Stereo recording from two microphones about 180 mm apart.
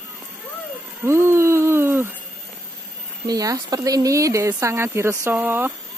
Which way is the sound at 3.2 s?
20° right (ahead or behind).